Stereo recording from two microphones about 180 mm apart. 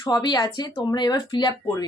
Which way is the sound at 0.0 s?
25° left (ahead or behind).